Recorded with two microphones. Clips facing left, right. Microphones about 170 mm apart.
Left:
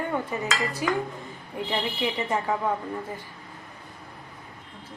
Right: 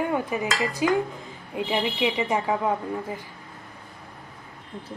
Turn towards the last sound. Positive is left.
turn(degrees=-15)  # may be behind; listen again after turning